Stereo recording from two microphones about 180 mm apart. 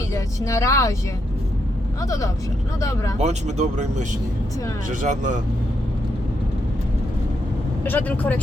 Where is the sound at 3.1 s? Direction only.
40° right (ahead or behind).